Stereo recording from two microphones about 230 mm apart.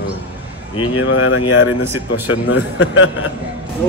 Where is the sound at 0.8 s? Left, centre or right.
Left.